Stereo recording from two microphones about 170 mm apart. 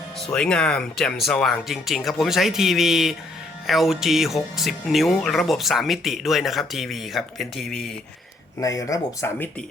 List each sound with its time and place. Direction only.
0.3 s speech: 5° left (ahead or behind)
8.6 s speech: 20° left (ahead or behind)